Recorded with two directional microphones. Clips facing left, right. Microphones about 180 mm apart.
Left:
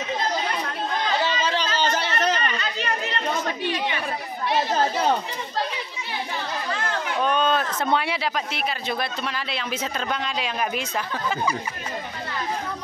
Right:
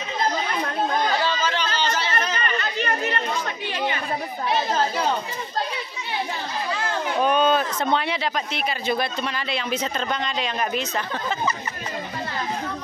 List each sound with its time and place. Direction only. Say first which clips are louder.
1.2 s chatter: even; 30° left (ahead or behind)
1.8 s a sound: left 1 dB; 55° left (ahead or behind)
2.4 s chatter: right 2 dB; 50° right (ahead or behind)
7.2 s speech: right 3 dB; 10° right (ahead or behind); by 11.5 s 10° left (ahead or behind)